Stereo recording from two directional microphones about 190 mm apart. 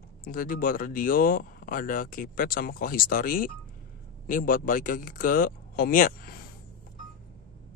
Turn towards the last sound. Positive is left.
turn(degrees=50)  # may be behind; listen again after turning